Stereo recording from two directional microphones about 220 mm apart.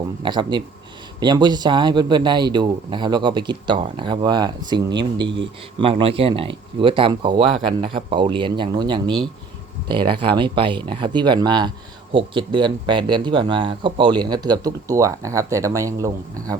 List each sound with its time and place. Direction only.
0.2 s speech: 20° right (ahead or behind)